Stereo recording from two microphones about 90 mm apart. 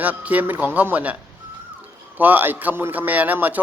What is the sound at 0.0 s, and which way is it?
A man's voice, 15° right (ahead or behind).